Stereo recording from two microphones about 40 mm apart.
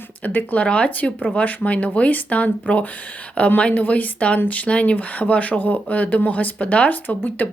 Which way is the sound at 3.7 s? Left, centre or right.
Left.